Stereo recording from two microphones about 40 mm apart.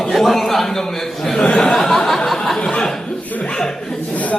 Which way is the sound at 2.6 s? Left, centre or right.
Left.